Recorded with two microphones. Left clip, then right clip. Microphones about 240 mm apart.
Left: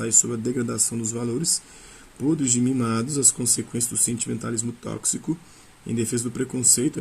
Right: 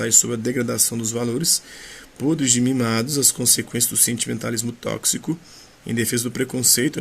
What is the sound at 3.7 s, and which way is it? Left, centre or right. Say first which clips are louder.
Speech: right 4 dB; right.